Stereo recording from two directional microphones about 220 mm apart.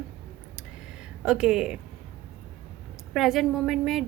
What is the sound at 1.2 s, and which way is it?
Speech, 5° right (ahead or behind).